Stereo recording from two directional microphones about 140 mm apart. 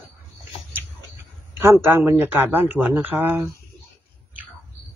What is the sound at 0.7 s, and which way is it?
Speech, 15° right (ahead or behind).